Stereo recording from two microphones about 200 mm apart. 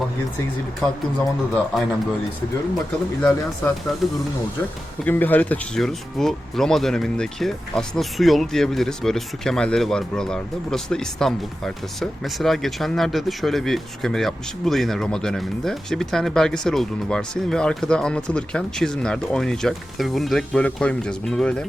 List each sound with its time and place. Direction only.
1.2 s speech: centre (ahead or behind)
3.2 s speech: 5° left (ahead or behind)
5.0 s speech: 10° left (ahead or behind)